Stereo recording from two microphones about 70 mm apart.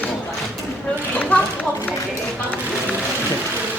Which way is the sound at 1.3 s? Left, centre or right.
Left.